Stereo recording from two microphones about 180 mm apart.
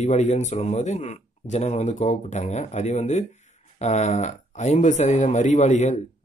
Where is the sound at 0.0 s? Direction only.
40° left (ahead or behind).